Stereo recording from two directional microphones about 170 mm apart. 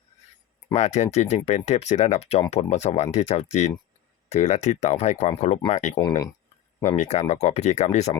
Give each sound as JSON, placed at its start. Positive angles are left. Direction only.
{"t": 0.7, "sound": "speech", "side_deg": 40}
{"t": 6.0, "sound": "speech", "side_deg": 20}
{"t": 6.8, "sound": "speech", "side_deg": 45}